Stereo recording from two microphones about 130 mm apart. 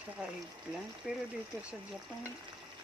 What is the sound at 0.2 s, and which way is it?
Speech, 5° right (ahead or behind).